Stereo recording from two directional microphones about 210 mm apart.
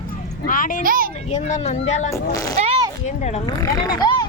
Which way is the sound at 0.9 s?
40° right (ahead or behind).